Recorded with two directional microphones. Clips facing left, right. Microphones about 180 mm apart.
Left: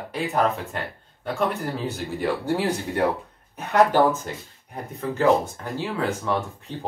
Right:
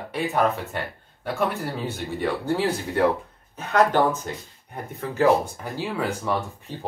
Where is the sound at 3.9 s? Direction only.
Centre (ahead or behind).